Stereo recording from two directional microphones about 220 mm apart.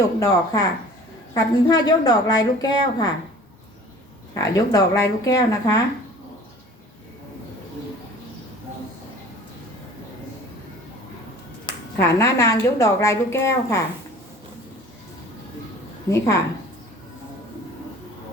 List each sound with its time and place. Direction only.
0.2 s a woman's voice: 15° left (ahead or behind)
4.5 s a woman's voice: 15° left (ahead or behind)
11.6 s a woman's voice: 15° left (ahead or behind)
16.0 s a woman's voice: 15° left (ahead or behind)